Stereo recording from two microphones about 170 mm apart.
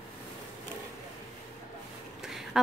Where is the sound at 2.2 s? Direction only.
Centre (ahead or behind).